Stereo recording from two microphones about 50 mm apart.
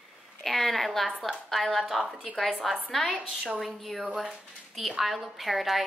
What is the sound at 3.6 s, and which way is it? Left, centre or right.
A woman's voice, centre.